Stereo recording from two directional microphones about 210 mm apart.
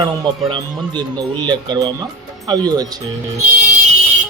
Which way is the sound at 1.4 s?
20° right (ahead or behind).